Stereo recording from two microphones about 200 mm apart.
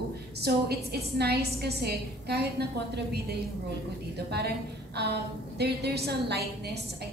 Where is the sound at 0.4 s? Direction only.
55° right (ahead or behind).